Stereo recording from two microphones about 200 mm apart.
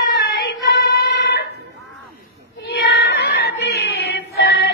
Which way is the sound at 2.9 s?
55° left (ahead or behind).